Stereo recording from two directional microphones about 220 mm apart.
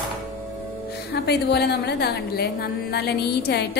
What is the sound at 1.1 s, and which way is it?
A woman's voice, 50° left (ahead or behind).